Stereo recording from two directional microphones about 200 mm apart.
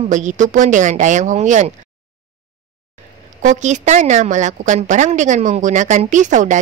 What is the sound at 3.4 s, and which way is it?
Speech, 40° right (ahead or behind).